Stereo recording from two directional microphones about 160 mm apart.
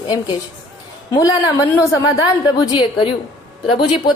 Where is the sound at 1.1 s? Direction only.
20° left (ahead or behind).